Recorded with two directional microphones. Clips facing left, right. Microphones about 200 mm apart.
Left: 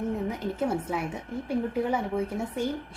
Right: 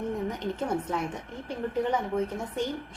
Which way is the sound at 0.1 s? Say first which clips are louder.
Left 1 dB; 5° left (ahead or behind).